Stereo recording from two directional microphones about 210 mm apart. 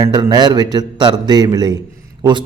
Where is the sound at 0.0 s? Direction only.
20° right (ahead or behind).